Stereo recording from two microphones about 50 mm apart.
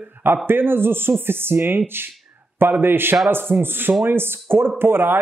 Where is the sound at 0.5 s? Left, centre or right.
Right.